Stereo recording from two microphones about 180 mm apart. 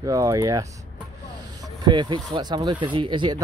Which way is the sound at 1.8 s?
25° right (ahead or behind).